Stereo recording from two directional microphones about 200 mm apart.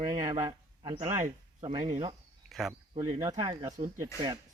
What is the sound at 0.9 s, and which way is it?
Speech, 35° right (ahead or behind).